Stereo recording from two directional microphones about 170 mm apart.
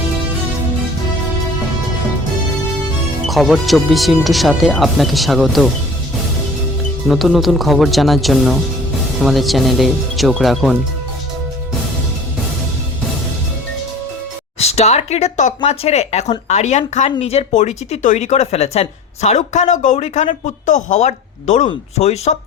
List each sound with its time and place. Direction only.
3.2 s speech: centre (ahead or behind)
7.1 s speech: centre (ahead or behind)
14.6 s speech: 40° left (ahead or behind)